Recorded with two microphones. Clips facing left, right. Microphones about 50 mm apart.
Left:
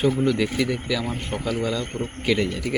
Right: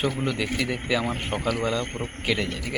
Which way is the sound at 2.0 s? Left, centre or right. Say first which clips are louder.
Left 4 dB; centre.